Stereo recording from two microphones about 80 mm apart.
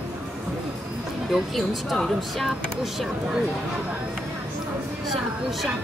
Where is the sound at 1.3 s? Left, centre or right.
Centre.